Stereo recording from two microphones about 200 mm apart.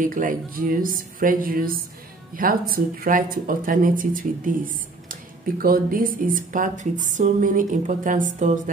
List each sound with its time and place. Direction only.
0.0 s speech: 40° right (ahead or behind)
5.6 s speech: 45° right (ahead or behind)